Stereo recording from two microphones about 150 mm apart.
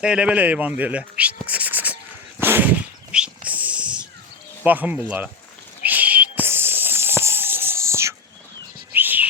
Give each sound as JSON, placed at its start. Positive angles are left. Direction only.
{"t": 0.0, "sound": "speech", "side_deg": -5}
{"t": 2.4, "sound": "a sound", "side_deg": -15}
{"t": 4.6, "sound": "speech", "side_deg": -10}
{"t": 5.8, "sound": "a sound", "side_deg": -10}
{"t": 7.2, "sound": "whispering", "side_deg": -15}
{"t": 8.9, "sound": "bird", "side_deg": -10}